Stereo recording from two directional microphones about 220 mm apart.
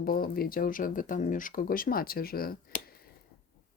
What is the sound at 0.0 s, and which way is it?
Speech, 45° left (ahead or behind).